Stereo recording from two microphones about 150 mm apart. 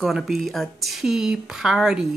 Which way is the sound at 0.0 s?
Centre (ahead or behind).